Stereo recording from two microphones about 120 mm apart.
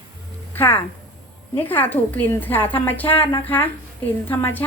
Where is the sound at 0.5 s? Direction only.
15° left (ahead or behind).